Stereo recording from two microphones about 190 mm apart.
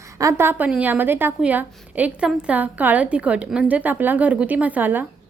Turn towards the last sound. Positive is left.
turn(degrees=-10)  # may be behind; listen again after turning